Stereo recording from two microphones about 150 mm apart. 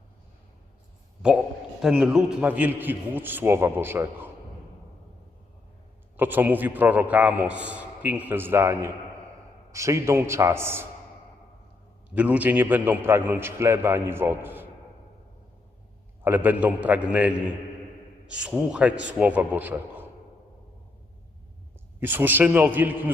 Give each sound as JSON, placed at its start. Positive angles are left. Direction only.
{"t": 1.8, "sound": "a man's voice", "side_deg": -5}
{"t": 6.1, "sound": "a man's voice", "side_deg": -15}
{"t": 12.1, "sound": "a man's voice", "side_deg": -10}
{"t": 16.2, "sound": "a man's voice", "side_deg": -10}
{"t": 18.3, "sound": "a man's voice", "side_deg": -5}
{"t": 22.0, "sound": "a man's voice", "side_deg": -15}